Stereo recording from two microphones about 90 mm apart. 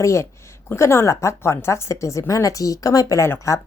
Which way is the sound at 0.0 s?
35° left (ahead or behind).